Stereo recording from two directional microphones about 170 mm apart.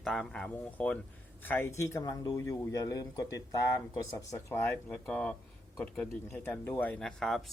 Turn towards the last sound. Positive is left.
turn(degrees=0)  # may be behind; listen again after turning